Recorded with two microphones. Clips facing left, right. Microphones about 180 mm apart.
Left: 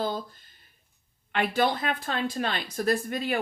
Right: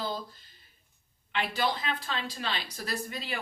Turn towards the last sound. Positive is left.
turn(degrees=50)  # may be behind; listen again after turning